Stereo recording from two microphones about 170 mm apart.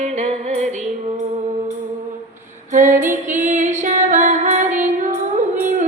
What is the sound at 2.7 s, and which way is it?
Music, 50° right (ahead or behind).